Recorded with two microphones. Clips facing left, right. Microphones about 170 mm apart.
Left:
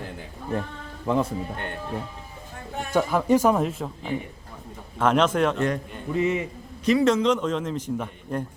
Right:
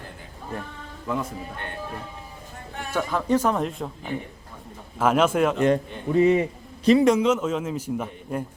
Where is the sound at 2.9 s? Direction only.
15° left (ahead or behind); by 5.6 s 5° right (ahead or behind).